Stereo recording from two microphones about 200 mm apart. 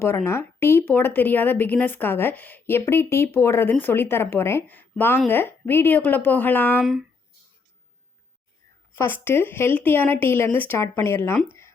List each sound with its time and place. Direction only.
0.3 s a woman's voice: 10° left (ahead or behind)
6.7 s speech: centre (ahead or behind)
9.0 s a woman's voice: 10° left (ahead or behind)
11.4 s a sound: 15° left (ahead or behind)